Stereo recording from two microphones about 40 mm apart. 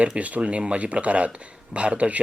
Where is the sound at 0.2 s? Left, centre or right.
Right.